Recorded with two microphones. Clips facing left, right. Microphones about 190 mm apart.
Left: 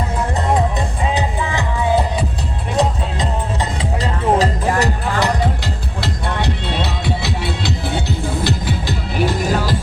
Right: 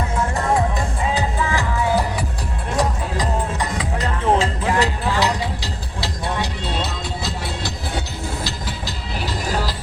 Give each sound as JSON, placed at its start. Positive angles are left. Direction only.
{"t": 1.1, "sound": "music", "side_deg": 20}